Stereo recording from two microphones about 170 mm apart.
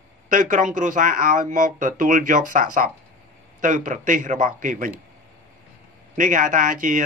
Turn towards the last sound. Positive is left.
turn(degrees=-50)  # may be behind; listen again after turning